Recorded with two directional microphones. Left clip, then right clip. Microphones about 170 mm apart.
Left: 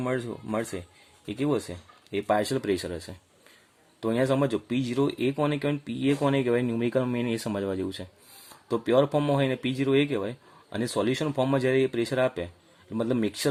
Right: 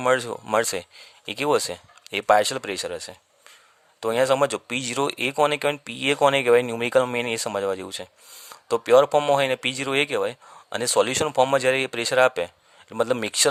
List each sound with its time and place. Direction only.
0.0 s speech: 55° right (ahead or behind)